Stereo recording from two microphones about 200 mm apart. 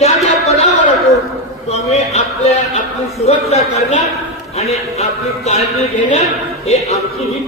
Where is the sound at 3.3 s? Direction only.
30° left (ahead or behind).